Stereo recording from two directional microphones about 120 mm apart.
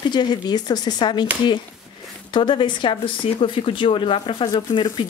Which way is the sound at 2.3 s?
40° left (ahead or behind).